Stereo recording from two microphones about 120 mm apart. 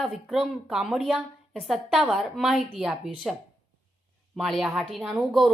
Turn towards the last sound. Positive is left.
turn(degrees=0)  # may be behind; listen again after turning